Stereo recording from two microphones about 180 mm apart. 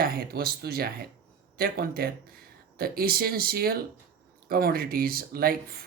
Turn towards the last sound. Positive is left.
turn(degrees=-55)  # may be behind; listen again after turning